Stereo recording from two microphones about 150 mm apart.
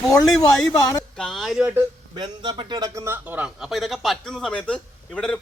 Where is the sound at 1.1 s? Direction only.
Centre (ahead or behind).